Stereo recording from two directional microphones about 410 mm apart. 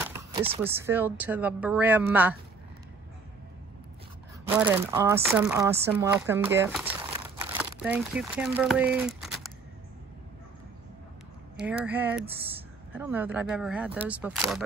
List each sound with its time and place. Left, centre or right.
0.0 s speech: centre
4.5 s speech: centre
11.5 s speech: centre